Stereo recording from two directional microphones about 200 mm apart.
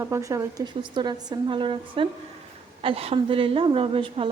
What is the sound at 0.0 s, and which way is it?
A woman's voice, 15° right (ahead or behind).